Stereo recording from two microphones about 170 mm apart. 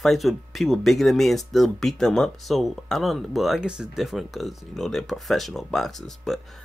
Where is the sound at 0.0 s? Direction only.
Centre (ahead or behind).